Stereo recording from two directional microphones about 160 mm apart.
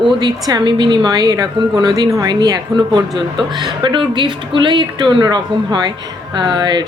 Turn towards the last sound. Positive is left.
turn(degrees=-30)  # may be behind; listen again after turning